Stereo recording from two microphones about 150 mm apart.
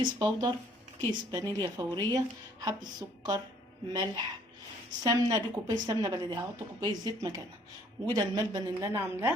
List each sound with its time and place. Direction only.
0.0 s a woman's voice: 25° right (ahead or behind)